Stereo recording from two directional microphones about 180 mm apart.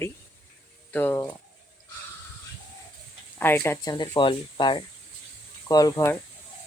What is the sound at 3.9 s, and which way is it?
Speech, 25° left (ahead or behind).